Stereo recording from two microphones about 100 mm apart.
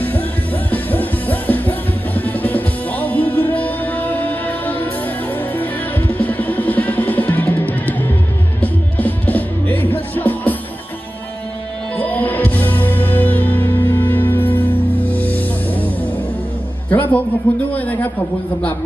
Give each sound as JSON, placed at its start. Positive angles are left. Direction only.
{"t": 0.7, "sound": "music", "side_deg": 15}
{"t": 12.0, "sound": "music", "side_deg": 15}
{"t": 16.9, "sound": "music", "side_deg": 15}
{"t": 17.7, "sound": "a sound", "side_deg": 15}